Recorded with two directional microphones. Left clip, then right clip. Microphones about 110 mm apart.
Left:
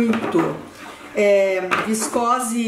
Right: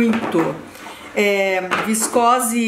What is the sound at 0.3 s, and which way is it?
Speech, 20° right (ahead or behind).